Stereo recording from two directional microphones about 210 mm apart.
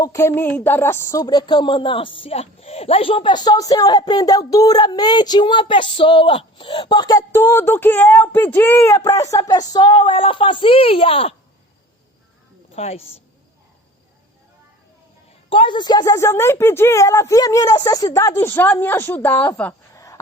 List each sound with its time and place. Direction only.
0.0 s speech: 15° left (ahead or behind)
12.7 s a woman's voice: 30° left (ahead or behind)
15.4 s a woman's voice: 25° left (ahead or behind)